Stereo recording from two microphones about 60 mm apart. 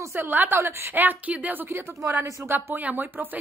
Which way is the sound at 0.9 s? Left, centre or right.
Right.